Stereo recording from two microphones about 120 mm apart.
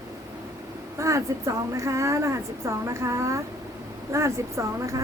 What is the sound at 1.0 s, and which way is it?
A woman's voice, 25° right (ahead or behind).